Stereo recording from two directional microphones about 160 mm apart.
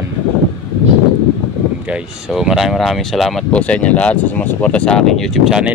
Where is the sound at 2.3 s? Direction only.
Centre (ahead or behind).